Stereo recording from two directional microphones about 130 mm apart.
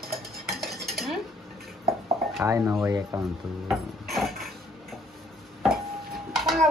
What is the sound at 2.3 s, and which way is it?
Speech, 20° right (ahead or behind).